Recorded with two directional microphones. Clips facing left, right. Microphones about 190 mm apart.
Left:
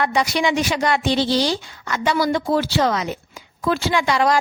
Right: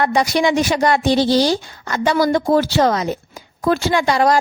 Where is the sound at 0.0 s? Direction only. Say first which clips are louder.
Right 4 dB; 40° right (ahead or behind).